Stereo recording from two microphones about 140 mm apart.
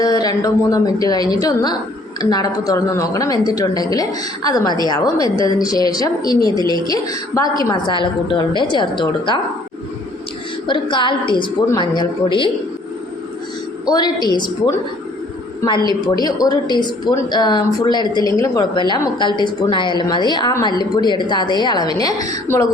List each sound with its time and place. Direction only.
0.0 s a woman's voice: 25° left (ahead or behind)
10.7 s speech: 35° left (ahead or behind)
13.9 s speech: 30° left (ahead or behind)
15.9 s speech: 30° left (ahead or behind)